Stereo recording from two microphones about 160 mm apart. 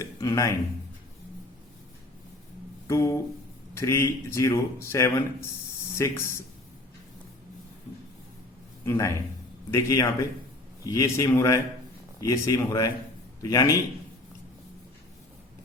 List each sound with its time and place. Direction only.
0.0 s speech: 20° left (ahead or behind)
2.8 s a sound: 20° left (ahead or behind)
3.8 s speech: 20° left (ahead or behind)
8.8 s a man's voice: 20° left (ahead or behind)